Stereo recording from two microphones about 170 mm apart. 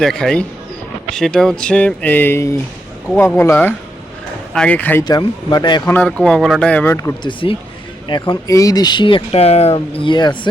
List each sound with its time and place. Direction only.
0.0 s speech: 5° left (ahead or behind)
5.0 s speech: 25° left (ahead or behind)
5.8 s speech: 5° left (ahead or behind)
7.2 s speech: 30° left (ahead or behind)
10.0 s speech: 25° left (ahead or behind)